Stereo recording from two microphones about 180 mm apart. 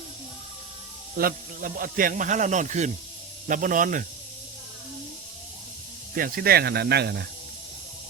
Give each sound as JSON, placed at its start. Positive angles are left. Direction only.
{"t": 1.2, "sound": "speech", "side_deg": -50}
{"t": 6.1, "sound": "speech", "side_deg": -55}